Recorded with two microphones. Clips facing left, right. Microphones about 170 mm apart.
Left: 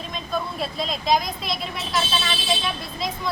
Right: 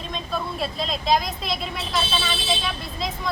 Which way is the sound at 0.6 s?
Centre (ahead or behind).